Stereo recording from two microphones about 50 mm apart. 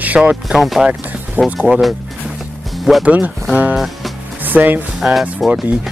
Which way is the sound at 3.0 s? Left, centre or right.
Right.